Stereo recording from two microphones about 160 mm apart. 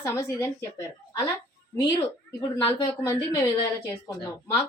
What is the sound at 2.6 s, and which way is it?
A woman's voice, 15° left (ahead or behind).